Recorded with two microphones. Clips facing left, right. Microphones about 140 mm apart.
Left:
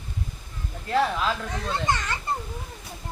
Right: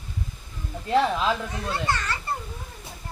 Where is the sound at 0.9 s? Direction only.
20° right (ahead or behind).